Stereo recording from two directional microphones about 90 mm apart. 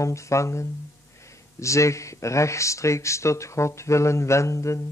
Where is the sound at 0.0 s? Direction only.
35° left (ahead or behind).